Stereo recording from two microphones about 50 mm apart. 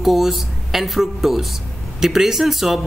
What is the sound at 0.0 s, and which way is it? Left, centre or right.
Speech, centre.